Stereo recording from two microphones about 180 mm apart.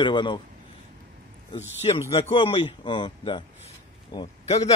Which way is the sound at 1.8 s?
30° left (ahead or behind).